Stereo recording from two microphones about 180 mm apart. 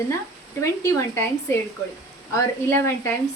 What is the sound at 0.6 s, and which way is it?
A woman's voice, 15° left (ahead or behind).